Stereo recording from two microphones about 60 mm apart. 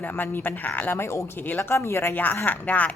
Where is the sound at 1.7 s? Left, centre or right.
Left.